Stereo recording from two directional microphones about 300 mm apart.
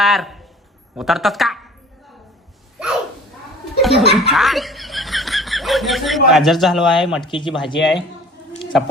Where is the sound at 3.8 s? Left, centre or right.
Centre.